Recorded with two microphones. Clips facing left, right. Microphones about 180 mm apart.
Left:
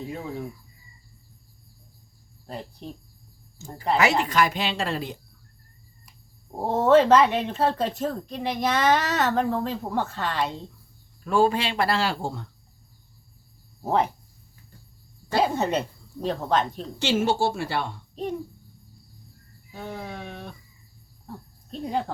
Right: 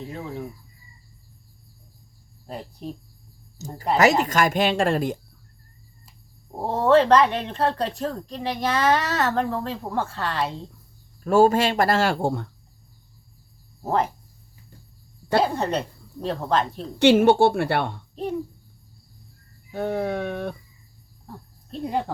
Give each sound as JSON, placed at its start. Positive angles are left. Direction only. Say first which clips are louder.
{"t": 0.1, "sound": "speech", "louder": "right 1 dB", "side_deg": 0}
{"t": 3.6, "sound": "speech", "louder": "right 3 dB", "side_deg": -40}
{"t": 6.6, "sound": "speech", "louder": "even", "side_deg": 0}
{"t": 11.2, "sound": "speech", "louder": "right 5 dB", "side_deg": -45}
{"t": 13.8, "sound": "speech", "louder": "even", "side_deg": 0}
{"t": 15.4, "sound": "speech", "louder": "even", "side_deg": 5}
{"t": 17.0, "sound": "a woman's voice", "louder": "right 8 dB", "side_deg": -60}
{"t": 18.1, "sound": "a child's voice", "louder": "left 1 dB", "side_deg": 0}
{"t": 19.7, "sound": "a woman's voice", "louder": "right 10 dB", "side_deg": -60}
{"t": 21.7, "sound": "speech", "louder": "right 2 dB", "side_deg": -5}